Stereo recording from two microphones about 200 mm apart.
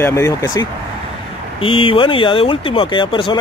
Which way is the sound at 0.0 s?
15° left (ahead or behind).